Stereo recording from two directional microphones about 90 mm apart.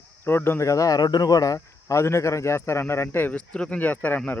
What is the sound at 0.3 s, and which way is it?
Speech, 25° left (ahead or behind).